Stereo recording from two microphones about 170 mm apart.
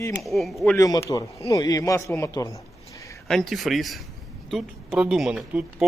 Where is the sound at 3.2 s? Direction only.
Centre (ahead or behind).